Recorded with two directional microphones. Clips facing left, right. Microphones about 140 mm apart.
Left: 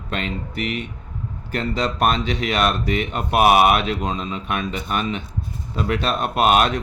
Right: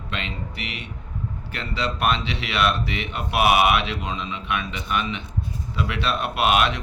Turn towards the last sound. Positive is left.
turn(degrees=45)  # may be behind; listen again after turning